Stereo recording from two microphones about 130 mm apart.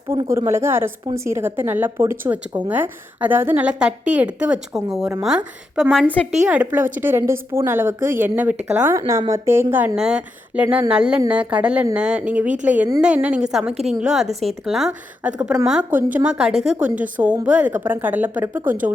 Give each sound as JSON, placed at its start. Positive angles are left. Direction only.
{"t": 0.1, "sound": "a woman's voice", "side_deg": -20}
{"t": 6.3, "sound": "a woman's voice", "side_deg": -10}
{"t": 9.9, "sound": "speech", "side_deg": -5}